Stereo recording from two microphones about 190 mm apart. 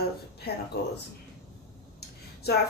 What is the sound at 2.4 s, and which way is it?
Speech, 60° left (ahead or behind).